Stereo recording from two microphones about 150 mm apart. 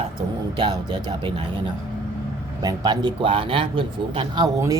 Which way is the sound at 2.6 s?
25° right (ahead or behind).